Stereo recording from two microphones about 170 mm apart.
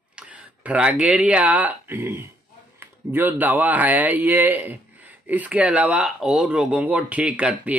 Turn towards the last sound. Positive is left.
turn(degrees=-5)  # may be behind; listen again after turning